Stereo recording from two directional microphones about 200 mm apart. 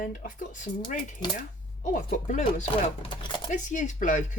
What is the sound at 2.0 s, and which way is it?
Speech, 35° left (ahead or behind).